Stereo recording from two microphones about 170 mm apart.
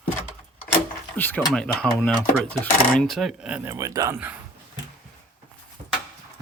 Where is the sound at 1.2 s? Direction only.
10° left (ahead or behind); by 4.2 s 20° right (ahead or behind).